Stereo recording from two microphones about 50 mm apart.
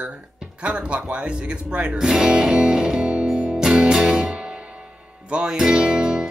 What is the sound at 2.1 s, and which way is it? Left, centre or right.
Music, centre.